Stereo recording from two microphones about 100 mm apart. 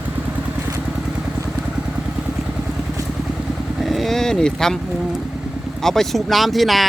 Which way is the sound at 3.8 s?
Centre (ahead or behind).